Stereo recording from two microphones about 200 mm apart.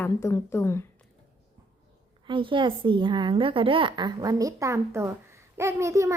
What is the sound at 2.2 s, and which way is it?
Speech, 25° right (ahead or behind).